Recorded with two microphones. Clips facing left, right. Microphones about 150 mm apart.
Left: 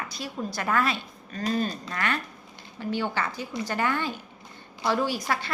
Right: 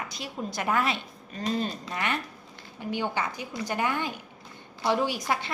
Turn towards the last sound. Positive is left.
turn(degrees=-20)  # may be behind; listen again after turning